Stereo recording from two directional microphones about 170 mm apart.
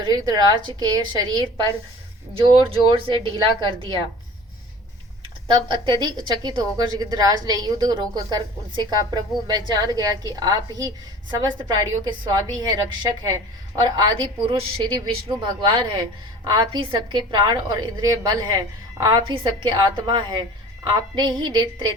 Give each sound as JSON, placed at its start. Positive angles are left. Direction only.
{"t": 0.0, "sound": "a woman's voice", "side_deg": -25}
{"t": 5.5, "sound": "a woman's voice", "side_deg": -25}